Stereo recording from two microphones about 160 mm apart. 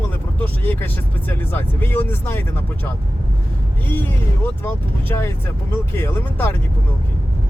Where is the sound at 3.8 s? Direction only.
10° left (ahead or behind).